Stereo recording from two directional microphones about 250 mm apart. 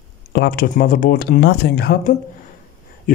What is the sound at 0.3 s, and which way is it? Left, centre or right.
Speech, left.